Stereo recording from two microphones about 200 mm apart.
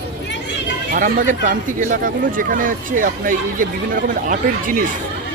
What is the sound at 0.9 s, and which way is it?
Speech, 40° right (ahead or behind).